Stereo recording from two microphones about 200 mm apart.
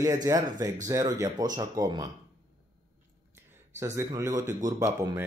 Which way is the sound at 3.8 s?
15° right (ahead or behind).